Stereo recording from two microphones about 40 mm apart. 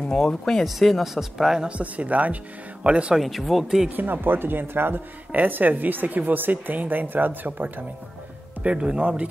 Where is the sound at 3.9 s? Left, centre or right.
Right.